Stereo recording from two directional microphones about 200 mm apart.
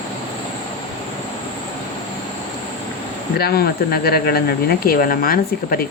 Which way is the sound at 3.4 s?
50° left (ahead or behind).